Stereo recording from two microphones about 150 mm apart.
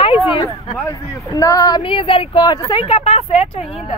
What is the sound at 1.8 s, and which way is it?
Speech, 35° left (ahead or behind).